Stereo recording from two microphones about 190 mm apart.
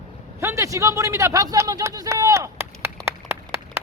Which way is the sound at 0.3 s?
15° right (ahead or behind).